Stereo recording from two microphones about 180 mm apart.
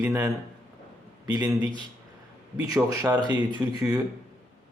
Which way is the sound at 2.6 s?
20° right (ahead or behind).